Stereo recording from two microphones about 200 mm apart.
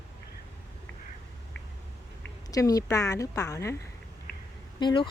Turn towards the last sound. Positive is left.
turn(degrees=25)  # may be behind; listen again after turning